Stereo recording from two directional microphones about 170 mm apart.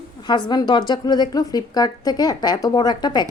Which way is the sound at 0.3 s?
25° left (ahead or behind).